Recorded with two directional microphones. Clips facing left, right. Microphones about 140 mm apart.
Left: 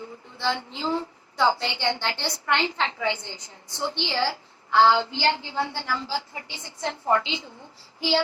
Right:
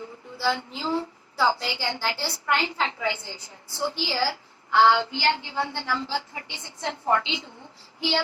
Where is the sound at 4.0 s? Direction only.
25° left (ahead or behind).